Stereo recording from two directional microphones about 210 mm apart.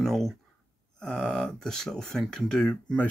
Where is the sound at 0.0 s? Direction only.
Centre (ahead or behind).